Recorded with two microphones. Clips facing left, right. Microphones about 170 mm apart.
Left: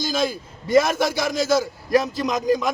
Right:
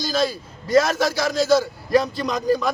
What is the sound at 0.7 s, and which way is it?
Speech, 20° left (ahead or behind).